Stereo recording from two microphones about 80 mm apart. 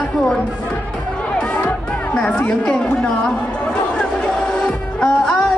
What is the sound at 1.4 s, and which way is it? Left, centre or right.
Music, centre.